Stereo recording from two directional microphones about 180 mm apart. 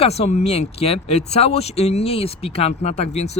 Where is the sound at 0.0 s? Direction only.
35° left (ahead or behind).